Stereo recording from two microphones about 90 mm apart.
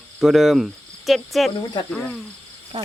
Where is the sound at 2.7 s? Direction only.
65° right (ahead or behind).